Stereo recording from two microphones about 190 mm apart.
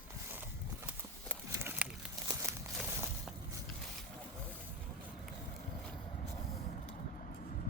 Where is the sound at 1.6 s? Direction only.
10° right (ahead or behind).